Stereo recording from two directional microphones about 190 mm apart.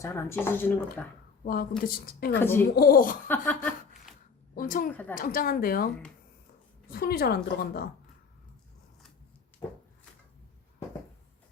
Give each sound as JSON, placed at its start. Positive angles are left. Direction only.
{"t": 0.0, "sound": "speech", "side_deg": 15}
{"t": 1.8, "sound": "a woman's voice", "side_deg": 55}
{"t": 2.4, "sound": "speech", "side_deg": 10}
{"t": 2.6, "sound": "a woman's voice", "side_deg": 50}
{"t": 3.2, "sound": "speech", "side_deg": 10}
{"t": 4.1, "sound": "a sound", "side_deg": -5}
{"t": 4.5, "sound": "a woman's voice", "side_deg": 45}
{"t": 6.9, "sound": "a woman's voice", "side_deg": 55}